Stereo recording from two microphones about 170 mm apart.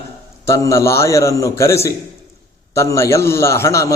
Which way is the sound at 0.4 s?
20° left (ahead or behind).